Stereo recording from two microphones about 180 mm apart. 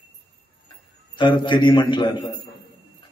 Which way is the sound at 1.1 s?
25° left (ahead or behind).